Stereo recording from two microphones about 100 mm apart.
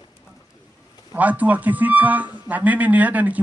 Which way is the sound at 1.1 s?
15° right (ahead or behind).